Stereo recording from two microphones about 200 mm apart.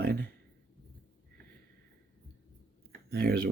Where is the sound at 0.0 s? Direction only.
50° right (ahead or behind).